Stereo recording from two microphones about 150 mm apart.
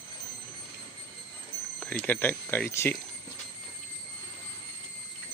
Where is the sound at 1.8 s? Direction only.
10° left (ahead or behind).